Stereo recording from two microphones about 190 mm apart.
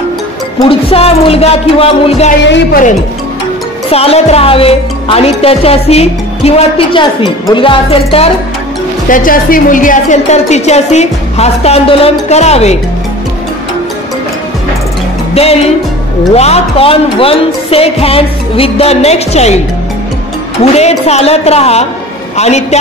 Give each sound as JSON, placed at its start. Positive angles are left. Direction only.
{"t": 0.6, "sound": "speech", "side_deg": 30}
{"t": 2.4, "sound": "a woman's voice", "side_deg": 70}
{"t": 3.9, "sound": "speech", "side_deg": 30}
{"t": 9.1, "sound": "speech", "side_deg": 45}
{"t": 15.3, "sound": "speech", "side_deg": 35}
{"t": 20.6, "sound": "speech", "side_deg": 35}